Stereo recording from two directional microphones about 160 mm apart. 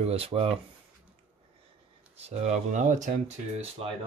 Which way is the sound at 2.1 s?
40° right (ahead or behind).